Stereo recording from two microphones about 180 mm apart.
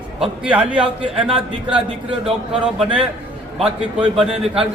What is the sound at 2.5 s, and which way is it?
A man's voice, 5° right (ahead or behind).